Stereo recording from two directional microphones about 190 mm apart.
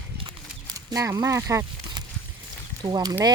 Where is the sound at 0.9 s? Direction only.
20° right (ahead or behind).